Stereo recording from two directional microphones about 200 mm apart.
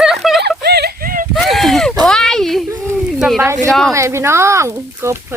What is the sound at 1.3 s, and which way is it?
Speech, centre (ahead or behind).